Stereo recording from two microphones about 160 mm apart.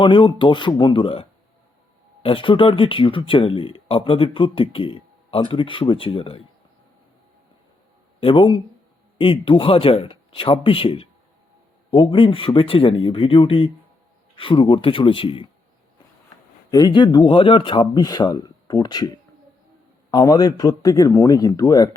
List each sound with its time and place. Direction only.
0.0 s speech: 30° left (ahead or behind)
8.2 s speech: 30° left (ahead or behind)
16.7 s speech: 25° left (ahead or behind)